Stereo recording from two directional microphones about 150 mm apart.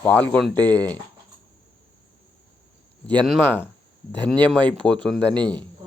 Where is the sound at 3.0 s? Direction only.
5° left (ahead or behind).